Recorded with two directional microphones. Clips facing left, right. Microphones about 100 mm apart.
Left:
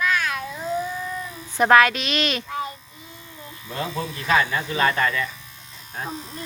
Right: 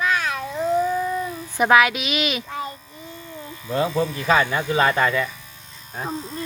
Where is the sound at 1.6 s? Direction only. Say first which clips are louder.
Left 1 dB; 5° right (ahead or behind).